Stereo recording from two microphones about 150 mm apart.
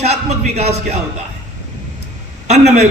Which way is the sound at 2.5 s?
45° right (ahead or behind).